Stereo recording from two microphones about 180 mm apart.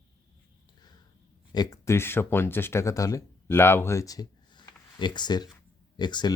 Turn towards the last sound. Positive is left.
turn(degrees=25)  # may be behind; listen again after turning